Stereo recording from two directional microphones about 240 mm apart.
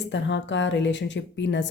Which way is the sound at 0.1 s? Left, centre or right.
Left.